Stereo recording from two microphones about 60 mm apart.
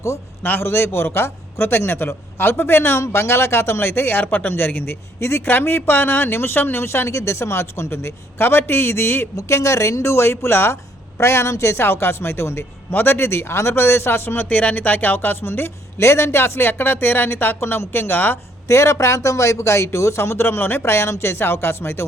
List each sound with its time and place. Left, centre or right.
0.6 s a man's voice: left
9.3 s a man's voice: left
18.7 s speech: left